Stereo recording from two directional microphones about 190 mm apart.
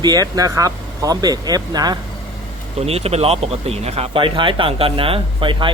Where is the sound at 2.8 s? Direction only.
30° right (ahead or behind).